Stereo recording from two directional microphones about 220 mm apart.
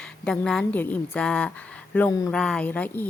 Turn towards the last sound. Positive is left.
turn(degrees=10)  # may be behind; listen again after turning